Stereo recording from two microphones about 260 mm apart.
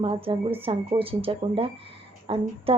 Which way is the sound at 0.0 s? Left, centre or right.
Right.